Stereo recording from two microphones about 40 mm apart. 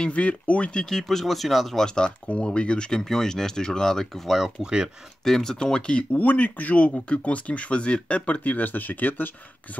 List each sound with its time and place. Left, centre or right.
0.0 s speech: left
0.7 s speech: centre
2.0 s speech: left
3.0 s speech: centre
4.3 s speech: centre
4.6 s speech: right
5.2 s speech: centre
5.6 s speech: left
6.1 s speech: left